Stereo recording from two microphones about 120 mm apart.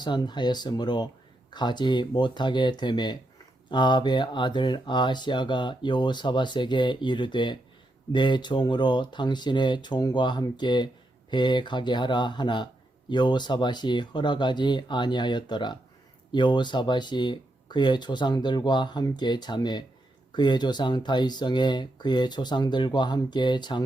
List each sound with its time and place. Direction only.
0.0 s speech: 40° left (ahead or behind)